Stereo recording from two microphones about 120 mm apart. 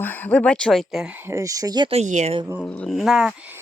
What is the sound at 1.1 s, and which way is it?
Speech, 20° right (ahead or behind).